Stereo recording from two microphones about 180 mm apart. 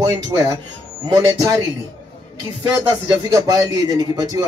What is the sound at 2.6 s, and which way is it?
Speech, 20° right (ahead or behind).